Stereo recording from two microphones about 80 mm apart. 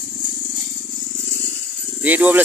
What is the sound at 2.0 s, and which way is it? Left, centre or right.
Speech, right.